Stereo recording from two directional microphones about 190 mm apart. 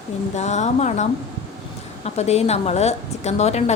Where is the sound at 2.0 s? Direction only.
35° left (ahead or behind).